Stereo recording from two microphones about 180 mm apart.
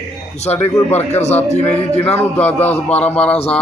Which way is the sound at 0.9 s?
35° left (ahead or behind).